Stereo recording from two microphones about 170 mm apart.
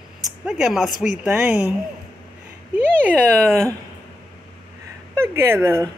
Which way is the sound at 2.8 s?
10° right (ahead or behind).